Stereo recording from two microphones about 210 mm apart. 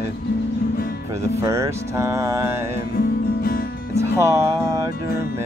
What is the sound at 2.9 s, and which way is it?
Music, 45° left (ahead or behind).